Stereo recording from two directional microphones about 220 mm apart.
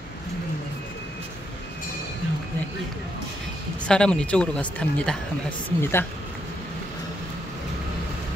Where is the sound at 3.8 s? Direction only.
5° left (ahead or behind).